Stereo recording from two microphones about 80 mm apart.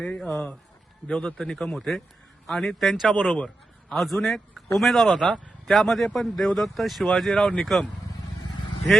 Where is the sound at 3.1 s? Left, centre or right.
Centre.